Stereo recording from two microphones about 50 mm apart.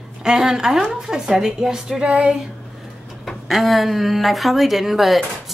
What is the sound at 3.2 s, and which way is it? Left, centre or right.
Speech, centre.